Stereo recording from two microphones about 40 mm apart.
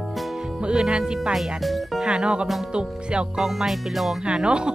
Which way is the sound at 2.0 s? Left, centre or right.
Right.